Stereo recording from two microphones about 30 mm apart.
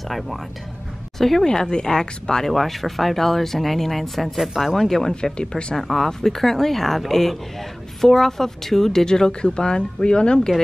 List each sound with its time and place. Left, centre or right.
1.1 s speech: centre
1.4 s speech: left
2.4 s speech: centre
5.1 s speech: left
5.8 s speech: centre
9.0 s speech: left